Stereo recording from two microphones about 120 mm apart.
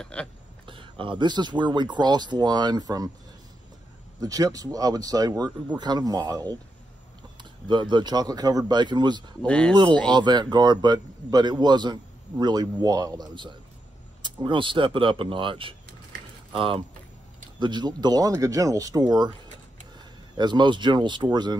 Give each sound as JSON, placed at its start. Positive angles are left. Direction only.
{"t": 0.0, "sound": "speech", "side_deg": 10}
{"t": 0.7, "sound": "a man's voice", "side_deg": -45}
{"t": 4.2, "sound": "a man's voice", "side_deg": -30}
{"t": 7.6, "sound": "a man's voice", "side_deg": -40}
{"t": 9.5, "sound": "speech", "side_deg": 10}
{"t": 10.0, "sound": "a man's voice", "side_deg": -40}
{"t": 20.3, "sound": "a man's voice", "side_deg": -40}